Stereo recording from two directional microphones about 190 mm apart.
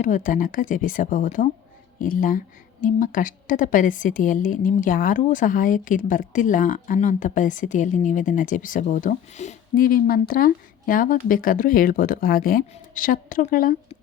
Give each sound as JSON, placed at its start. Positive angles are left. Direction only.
{"t": 0.0, "sound": "a woman's voice", "side_deg": 45}